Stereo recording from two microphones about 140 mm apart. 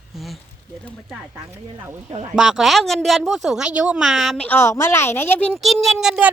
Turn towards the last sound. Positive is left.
turn(degrees=-5)  # may be behind; listen again after turning